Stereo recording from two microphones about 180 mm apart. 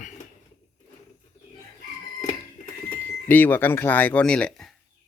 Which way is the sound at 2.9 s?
10° left (ahead or behind).